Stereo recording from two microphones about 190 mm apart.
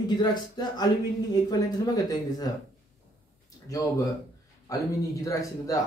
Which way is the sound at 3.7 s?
20° left (ahead or behind).